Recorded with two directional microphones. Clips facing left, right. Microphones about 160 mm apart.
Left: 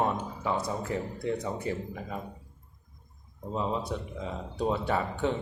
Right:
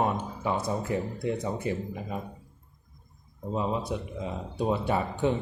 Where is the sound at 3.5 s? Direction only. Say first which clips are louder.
Right 1 dB; 10° right (ahead or behind).